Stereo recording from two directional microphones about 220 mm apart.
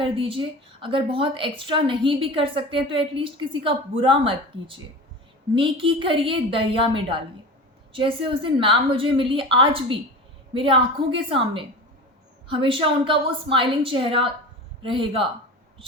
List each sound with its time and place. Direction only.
0.0 s a woman's voice: 25° right (ahead or behind)